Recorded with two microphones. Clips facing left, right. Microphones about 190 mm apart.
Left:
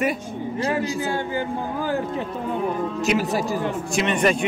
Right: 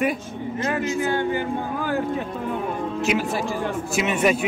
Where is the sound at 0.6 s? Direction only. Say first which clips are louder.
Even; 35° left (ahead or behind).